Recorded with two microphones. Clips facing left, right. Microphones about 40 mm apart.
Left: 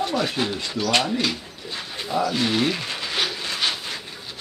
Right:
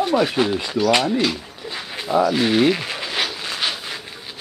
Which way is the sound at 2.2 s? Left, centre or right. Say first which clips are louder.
Right 5 dB; centre.